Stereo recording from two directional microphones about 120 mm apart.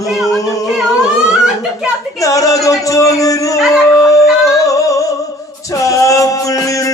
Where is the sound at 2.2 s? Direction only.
30° left (ahead or behind).